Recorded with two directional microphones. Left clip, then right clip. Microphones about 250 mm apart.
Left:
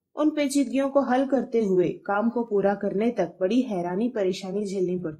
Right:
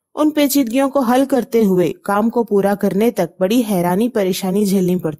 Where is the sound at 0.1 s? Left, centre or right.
Right.